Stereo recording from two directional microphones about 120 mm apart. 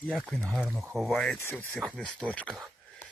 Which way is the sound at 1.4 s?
20° left (ahead or behind).